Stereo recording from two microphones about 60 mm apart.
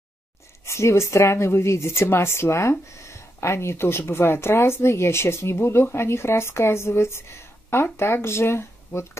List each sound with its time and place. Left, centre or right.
0.7 s speech: left